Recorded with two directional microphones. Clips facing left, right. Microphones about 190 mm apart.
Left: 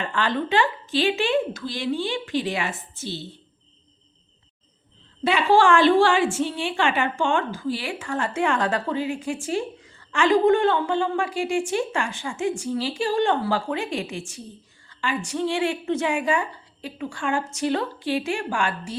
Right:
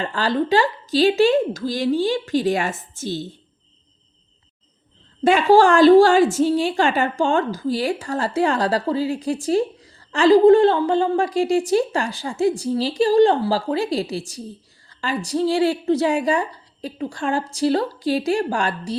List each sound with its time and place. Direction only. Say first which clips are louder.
0.0 s a woman's voice: right 4 dB; 35° right (ahead or behind)
5.2 s a woman's voice: right 5 dB; 45° right (ahead or behind)